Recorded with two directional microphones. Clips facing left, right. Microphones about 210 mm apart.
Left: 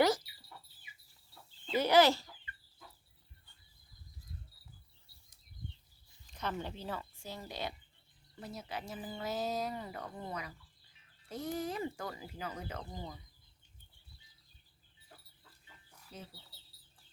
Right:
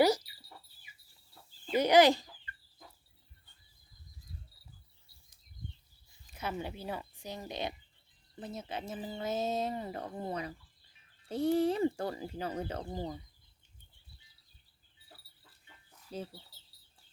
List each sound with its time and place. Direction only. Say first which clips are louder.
1.7 s speech: right 3 dB; 15° right (ahead or behind)
6.2 s speech: right 1 dB; 10° right (ahead or behind); by 13.1 s 35° right (ahead or behind)
16.1 s speech: right 9 dB; 30° right (ahead or behind)